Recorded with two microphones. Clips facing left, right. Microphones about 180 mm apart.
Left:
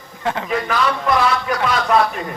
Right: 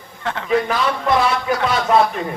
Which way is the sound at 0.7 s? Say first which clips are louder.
Even; 25° right (ahead or behind).